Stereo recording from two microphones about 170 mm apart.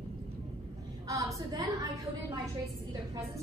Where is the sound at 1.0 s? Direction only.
20° right (ahead or behind).